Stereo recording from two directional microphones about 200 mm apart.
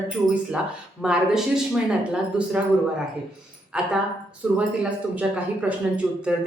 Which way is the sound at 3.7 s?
5° right (ahead or behind).